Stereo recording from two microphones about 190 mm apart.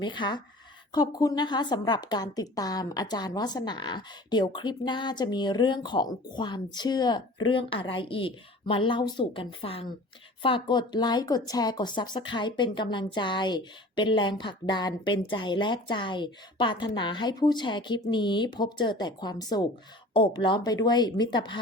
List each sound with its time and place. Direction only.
0.0 s a woman's voice: 25° left (ahead or behind)